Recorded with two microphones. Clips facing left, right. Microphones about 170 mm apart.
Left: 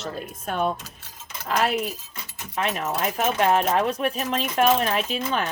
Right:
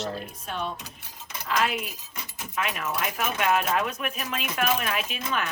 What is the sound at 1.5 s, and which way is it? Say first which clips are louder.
Speech: left 4 dB; 40° left (ahead or behind).